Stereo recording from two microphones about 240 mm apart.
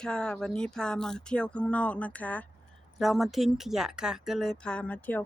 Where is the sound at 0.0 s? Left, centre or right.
Centre.